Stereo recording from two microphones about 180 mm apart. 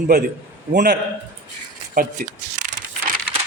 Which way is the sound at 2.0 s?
45° right (ahead or behind).